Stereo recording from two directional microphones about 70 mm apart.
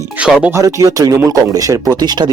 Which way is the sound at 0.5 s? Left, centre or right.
Right.